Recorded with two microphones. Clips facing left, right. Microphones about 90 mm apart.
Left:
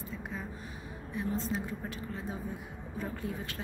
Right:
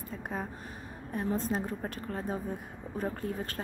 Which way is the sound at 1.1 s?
45° right (ahead or behind).